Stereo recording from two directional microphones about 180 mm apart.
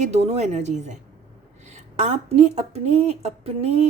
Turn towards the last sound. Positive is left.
turn(degrees=-35)  # may be behind; listen again after turning